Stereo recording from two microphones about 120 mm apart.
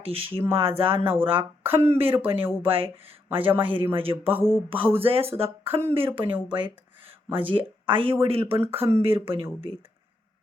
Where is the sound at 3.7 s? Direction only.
15° right (ahead or behind).